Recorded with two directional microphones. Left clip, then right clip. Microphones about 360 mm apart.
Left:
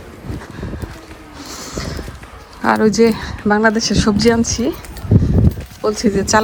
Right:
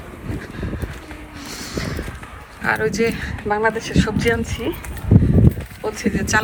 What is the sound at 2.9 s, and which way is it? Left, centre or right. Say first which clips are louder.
Speech: left 7 dB; centre.